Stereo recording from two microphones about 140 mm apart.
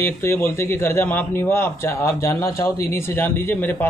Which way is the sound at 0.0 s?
15° left (ahead or behind).